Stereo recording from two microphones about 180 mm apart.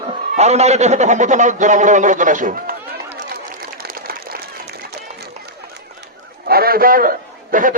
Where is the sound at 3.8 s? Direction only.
60° right (ahead or behind).